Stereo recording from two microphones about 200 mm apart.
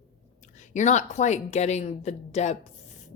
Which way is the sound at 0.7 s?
35° left (ahead or behind).